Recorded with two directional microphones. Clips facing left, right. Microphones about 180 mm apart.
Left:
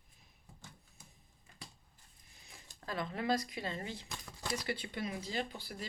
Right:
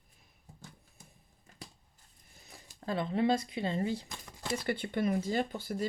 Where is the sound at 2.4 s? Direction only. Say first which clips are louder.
Right 7 dB; 30° right (ahead or behind).